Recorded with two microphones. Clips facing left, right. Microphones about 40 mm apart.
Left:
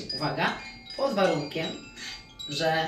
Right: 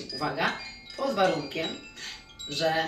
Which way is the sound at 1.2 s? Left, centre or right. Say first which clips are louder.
Right 1 dB; right.